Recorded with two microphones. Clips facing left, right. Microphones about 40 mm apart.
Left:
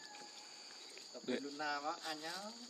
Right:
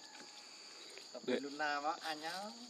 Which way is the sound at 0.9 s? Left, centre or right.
Centre.